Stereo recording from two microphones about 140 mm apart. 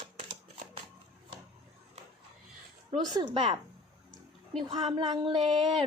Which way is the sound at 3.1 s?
30° right (ahead or behind).